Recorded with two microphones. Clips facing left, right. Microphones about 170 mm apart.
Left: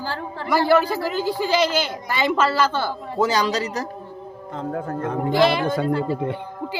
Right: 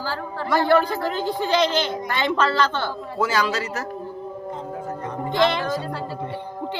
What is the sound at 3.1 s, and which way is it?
Speech, 20° left (ahead or behind).